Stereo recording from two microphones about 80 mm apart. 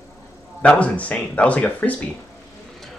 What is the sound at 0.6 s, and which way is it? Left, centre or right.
Speech, centre.